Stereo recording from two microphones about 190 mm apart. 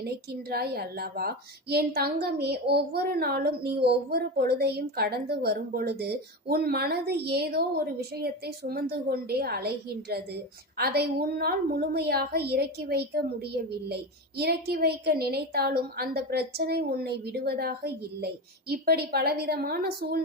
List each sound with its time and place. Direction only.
0.0 s a woman's voice: 55° right (ahead or behind)